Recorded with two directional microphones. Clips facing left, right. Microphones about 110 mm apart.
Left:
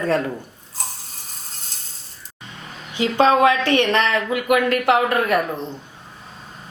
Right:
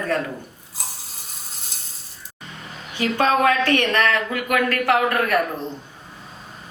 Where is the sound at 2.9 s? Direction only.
20° left (ahead or behind).